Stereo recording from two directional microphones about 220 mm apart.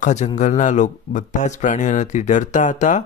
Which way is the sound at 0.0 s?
35° left (ahead or behind).